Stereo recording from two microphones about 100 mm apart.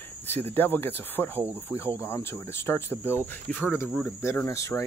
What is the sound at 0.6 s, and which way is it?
Cricket, 20° left (ahead or behind).